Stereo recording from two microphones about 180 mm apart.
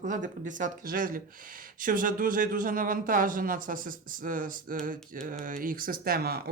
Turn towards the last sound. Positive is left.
turn(degrees=-60)  # may be behind; listen again after turning